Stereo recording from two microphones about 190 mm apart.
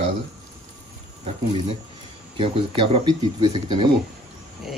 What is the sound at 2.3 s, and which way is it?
Speech, 30° right (ahead or behind).